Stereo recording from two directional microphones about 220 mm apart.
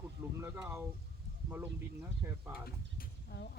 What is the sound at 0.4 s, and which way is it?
Speech, 10° right (ahead or behind).